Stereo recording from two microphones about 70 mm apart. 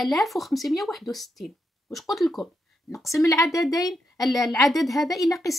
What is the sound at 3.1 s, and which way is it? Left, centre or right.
A woman's voice, left.